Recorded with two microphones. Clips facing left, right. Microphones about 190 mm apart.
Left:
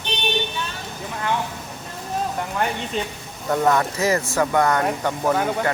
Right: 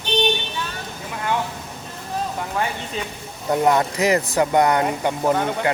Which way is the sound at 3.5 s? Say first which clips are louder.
Right 1 dB; 20° right (ahead or behind).